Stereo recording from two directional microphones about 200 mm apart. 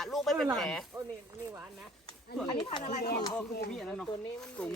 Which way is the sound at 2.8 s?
35° left (ahead or behind).